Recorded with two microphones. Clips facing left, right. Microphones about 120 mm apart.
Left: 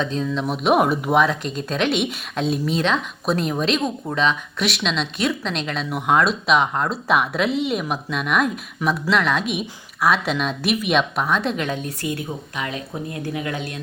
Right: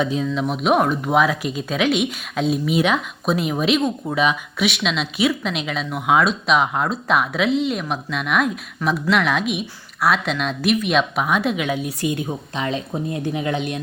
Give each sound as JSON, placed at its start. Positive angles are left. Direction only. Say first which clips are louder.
{"t": 0.0, "sound": "speech", "louder": "right 2 dB", "side_deg": -10}
{"t": 12.0, "sound": "speech", "louder": "right 4 dB", "side_deg": -20}